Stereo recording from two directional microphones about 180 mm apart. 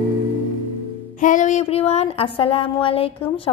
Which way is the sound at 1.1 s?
45° left (ahead or behind).